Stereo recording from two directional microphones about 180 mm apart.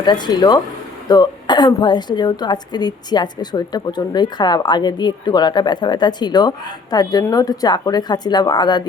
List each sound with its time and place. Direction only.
0.0 s a woman's voice: 25° left (ahead or behind)